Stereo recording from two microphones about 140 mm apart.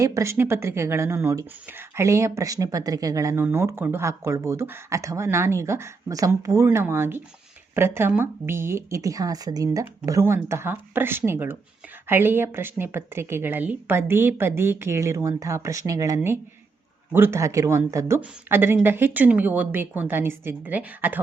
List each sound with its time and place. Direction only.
0.0 s a woman's voice: 20° right (ahead or behind)